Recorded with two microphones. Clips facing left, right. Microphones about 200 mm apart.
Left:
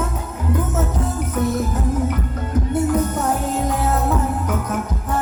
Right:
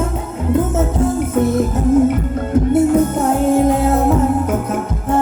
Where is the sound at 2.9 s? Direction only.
25° right (ahead or behind).